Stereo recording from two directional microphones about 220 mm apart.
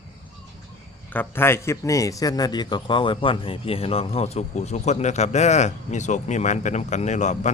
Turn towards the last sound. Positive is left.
turn(degrees=30)  # may be behind; listen again after turning